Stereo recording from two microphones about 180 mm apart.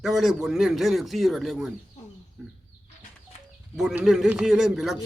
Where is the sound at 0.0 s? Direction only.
Centre (ahead or behind).